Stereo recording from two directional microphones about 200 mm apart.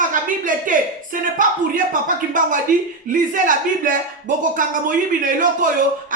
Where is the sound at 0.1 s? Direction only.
40° right (ahead or behind).